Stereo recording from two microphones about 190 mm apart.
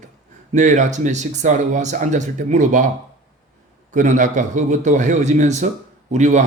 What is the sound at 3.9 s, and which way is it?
Speech, 40° right (ahead or behind).